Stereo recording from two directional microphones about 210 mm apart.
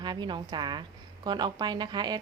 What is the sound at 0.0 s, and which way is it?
A woman's voice, 20° right (ahead or behind).